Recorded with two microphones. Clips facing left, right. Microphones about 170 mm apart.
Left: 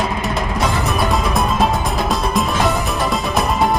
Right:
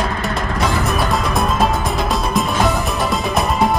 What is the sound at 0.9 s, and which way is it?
Music, centre (ahead or behind).